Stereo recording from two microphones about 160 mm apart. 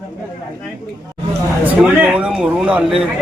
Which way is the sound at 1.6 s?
10° right (ahead or behind).